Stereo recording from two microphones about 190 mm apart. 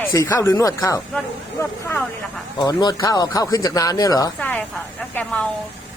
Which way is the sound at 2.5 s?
20° left (ahead or behind).